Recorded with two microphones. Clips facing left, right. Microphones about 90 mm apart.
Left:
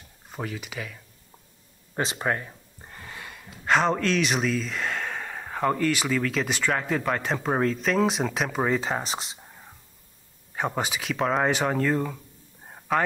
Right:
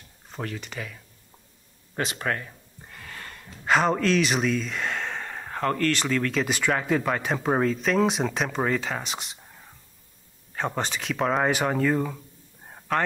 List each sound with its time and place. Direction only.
0.3 s speech: 5° left (ahead or behind)
2.1 s speech: 15° left (ahead or behind)
9.0 s speech: 35° left (ahead or behind)
9.5 s whispering: 10° left (ahead or behind)
10.5 s speech: 10° left (ahead or behind)
12.6 s a sound: 5° left (ahead or behind)